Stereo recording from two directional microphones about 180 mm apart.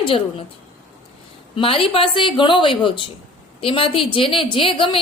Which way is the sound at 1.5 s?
30° left (ahead or behind).